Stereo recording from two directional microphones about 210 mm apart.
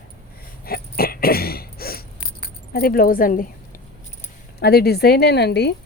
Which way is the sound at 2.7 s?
45° left (ahead or behind).